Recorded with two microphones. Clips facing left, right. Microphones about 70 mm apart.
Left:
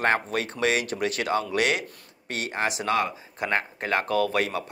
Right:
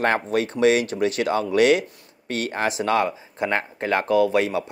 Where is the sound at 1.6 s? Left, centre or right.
Left.